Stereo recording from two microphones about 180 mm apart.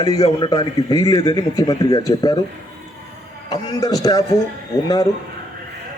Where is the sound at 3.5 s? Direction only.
20° left (ahead or behind).